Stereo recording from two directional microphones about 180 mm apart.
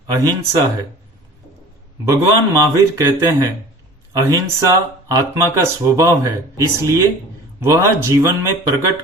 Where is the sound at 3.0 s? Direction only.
15° right (ahead or behind).